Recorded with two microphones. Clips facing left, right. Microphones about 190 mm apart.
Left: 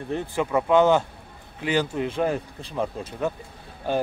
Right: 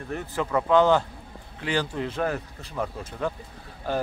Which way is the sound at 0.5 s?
15° left (ahead or behind).